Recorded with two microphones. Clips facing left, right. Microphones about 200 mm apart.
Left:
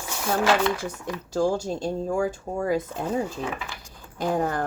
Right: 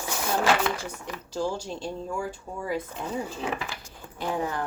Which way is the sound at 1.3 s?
45° left (ahead or behind).